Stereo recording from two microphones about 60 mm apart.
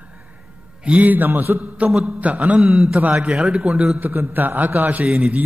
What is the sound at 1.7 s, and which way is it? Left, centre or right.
A man's voice, right.